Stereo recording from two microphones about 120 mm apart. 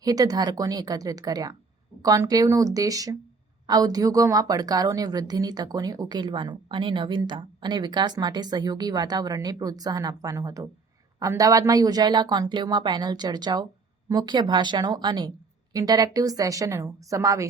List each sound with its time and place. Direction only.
0.0 s a woman's voice: 30° right (ahead or behind)